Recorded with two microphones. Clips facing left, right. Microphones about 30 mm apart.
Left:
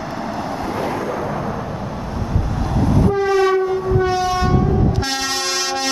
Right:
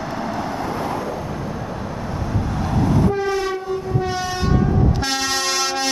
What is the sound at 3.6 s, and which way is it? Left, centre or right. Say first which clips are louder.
Train: left 5 dB; centre.